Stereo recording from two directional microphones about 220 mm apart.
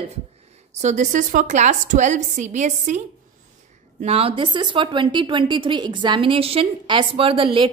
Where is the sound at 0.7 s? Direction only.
35° right (ahead or behind).